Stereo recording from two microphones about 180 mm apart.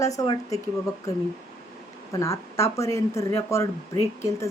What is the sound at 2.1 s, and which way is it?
Speech, 15° left (ahead or behind).